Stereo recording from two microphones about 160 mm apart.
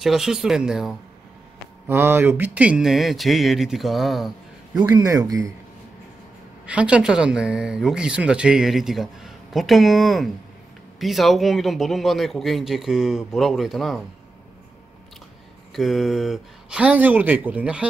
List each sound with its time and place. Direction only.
0.0 s speech: centre (ahead or behind)
1.9 s speech: 15° right (ahead or behind)
4.8 s speech: 20° right (ahead or behind)
6.6 s speech: 5° right (ahead or behind)
15.7 s speech: centre (ahead or behind)